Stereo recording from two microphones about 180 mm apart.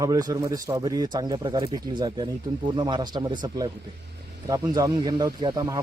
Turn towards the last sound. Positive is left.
turn(degrees=-20)  # may be behind; listen again after turning